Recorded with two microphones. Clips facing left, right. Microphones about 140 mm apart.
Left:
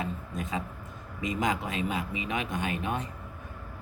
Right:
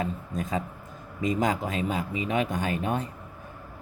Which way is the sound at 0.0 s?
35° right (ahead or behind).